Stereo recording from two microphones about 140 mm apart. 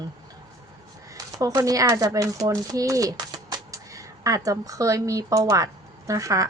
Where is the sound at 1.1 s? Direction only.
25° right (ahead or behind).